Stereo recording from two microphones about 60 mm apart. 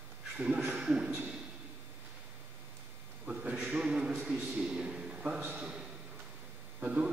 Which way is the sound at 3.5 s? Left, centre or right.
Right.